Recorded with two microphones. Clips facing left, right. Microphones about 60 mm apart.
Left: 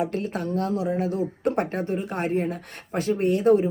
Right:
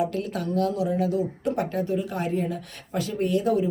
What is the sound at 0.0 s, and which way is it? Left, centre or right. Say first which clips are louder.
Speech: even; left.